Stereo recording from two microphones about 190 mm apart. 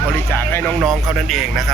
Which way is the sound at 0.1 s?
10° left (ahead or behind).